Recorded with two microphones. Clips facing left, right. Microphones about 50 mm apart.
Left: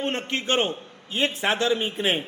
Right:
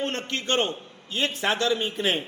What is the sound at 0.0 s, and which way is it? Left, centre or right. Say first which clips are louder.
A man's voice: left 2 dB; left.